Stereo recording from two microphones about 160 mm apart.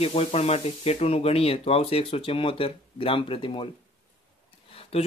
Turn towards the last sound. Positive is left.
turn(degrees=35)  # may be behind; listen again after turning